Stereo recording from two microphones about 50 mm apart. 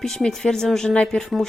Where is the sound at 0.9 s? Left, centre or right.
Left.